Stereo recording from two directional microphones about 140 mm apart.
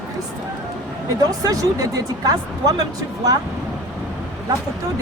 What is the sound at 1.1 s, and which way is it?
Speech, 25° right (ahead or behind).